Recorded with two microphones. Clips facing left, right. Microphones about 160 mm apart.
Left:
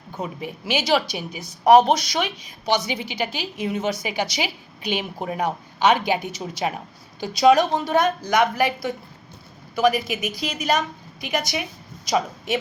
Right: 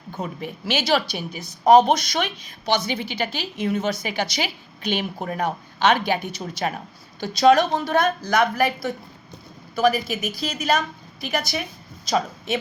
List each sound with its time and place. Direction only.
0.1 s a woman's voice: 10° left (ahead or behind)